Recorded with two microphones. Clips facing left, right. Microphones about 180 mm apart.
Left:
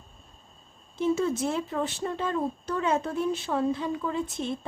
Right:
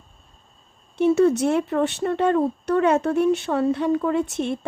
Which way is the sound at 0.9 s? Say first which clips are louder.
Right 9 dB; 70° right (ahead or behind).